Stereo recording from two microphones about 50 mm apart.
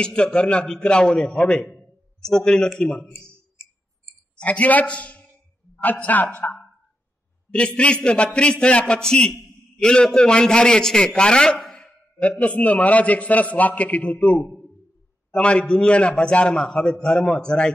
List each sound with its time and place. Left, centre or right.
0.0 s a man's voice: centre
1.8 s a sound: centre
4.4 s a man's voice: left
12.2 s a man's voice: left